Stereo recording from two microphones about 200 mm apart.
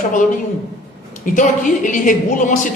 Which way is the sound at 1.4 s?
40° left (ahead or behind).